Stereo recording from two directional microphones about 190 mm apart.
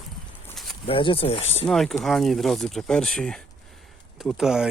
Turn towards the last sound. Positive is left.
turn(degrees=-5)  # may be behind; listen again after turning